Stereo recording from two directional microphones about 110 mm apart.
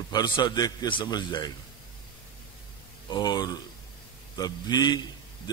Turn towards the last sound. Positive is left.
turn(degrees=40)  # may be behind; listen again after turning